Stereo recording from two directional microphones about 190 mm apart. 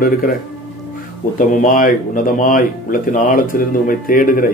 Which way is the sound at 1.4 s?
45° left (ahead or behind).